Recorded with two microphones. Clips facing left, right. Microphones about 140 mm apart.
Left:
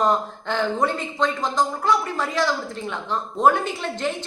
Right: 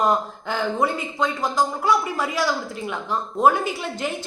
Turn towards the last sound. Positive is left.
turn(degrees=-5)  # may be behind; listen again after turning